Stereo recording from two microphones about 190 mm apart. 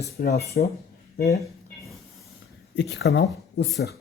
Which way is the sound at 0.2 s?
55° left (ahead or behind).